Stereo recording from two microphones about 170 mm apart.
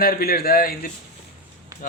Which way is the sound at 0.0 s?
60° left (ahead or behind).